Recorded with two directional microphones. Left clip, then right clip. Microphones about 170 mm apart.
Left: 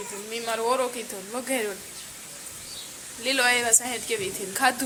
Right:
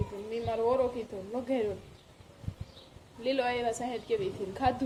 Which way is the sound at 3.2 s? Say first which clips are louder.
Left 7 dB; centre (ahead or behind).